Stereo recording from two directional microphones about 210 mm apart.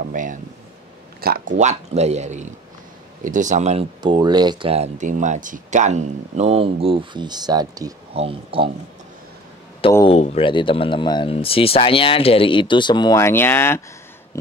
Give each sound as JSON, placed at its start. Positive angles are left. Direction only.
{"t": 0.0, "sound": "speech", "side_deg": -40}
{"t": 4.0, "sound": "speech", "side_deg": -20}
{"t": 10.0, "sound": "speech", "side_deg": 30}
{"t": 14.3, "sound": "a sound", "side_deg": 15}